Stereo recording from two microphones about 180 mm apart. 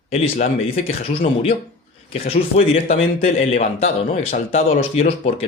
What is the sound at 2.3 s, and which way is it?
Speech, 35° left (ahead or behind).